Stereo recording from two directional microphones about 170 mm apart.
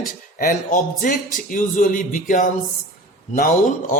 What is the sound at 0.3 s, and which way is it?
A man's voice, 50° left (ahead or behind).